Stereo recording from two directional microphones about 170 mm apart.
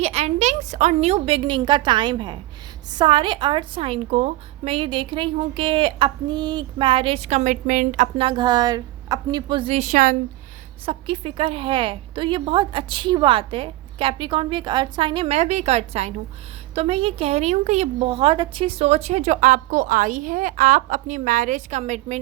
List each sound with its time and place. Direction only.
0.0 s a woman's voice: 40° right (ahead or behind)
8.3 s a woman's voice: 25° right (ahead or behind); by 10.2 s 50° right (ahead or behind)
10.8 s a woman's voice: 30° right (ahead or behind)